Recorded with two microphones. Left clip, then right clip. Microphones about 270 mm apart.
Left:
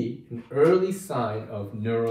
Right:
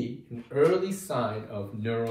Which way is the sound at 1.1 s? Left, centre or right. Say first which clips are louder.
Right 1 dB; centre.